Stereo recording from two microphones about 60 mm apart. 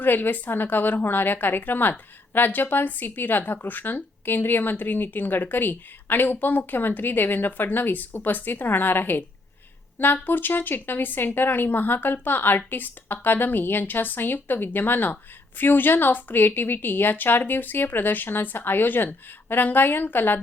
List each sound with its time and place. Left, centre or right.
0.0 s a woman's voice: left